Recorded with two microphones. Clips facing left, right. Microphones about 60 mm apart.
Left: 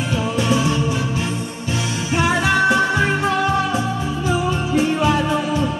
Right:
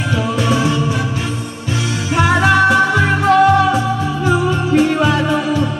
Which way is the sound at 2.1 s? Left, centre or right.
Right.